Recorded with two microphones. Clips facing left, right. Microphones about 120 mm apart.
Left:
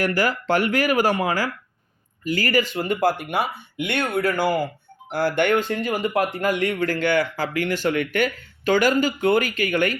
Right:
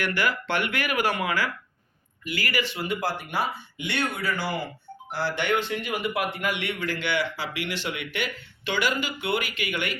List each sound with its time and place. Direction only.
0.0 s a man's voice: 40° left (ahead or behind)